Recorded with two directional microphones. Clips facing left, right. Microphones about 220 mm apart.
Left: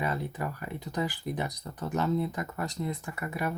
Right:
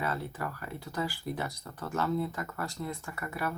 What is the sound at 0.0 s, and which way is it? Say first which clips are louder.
Speech: left 2 dB; 15° left (ahead or behind).